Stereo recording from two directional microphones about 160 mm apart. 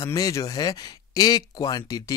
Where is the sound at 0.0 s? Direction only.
20° left (ahead or behind).